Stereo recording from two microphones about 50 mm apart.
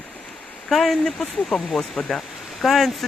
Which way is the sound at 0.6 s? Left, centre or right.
Centre.